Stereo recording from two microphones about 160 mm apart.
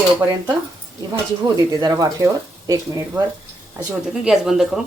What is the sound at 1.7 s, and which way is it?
Speech, 25° right (ahead or behind).